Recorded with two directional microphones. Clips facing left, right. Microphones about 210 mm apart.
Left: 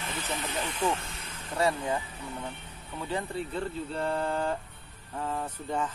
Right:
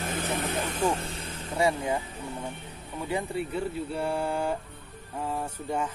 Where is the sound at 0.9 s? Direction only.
35° right (ahead or behind).